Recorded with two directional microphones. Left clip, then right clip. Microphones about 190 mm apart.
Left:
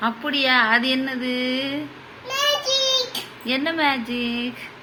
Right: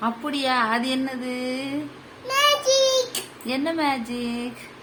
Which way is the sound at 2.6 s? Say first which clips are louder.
Right 1 dB; 15° right (ahead or behind).